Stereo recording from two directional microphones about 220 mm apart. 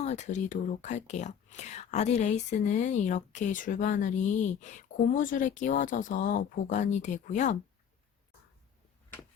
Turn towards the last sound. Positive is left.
turn(degrees=35)  # may be behind; listen again after turning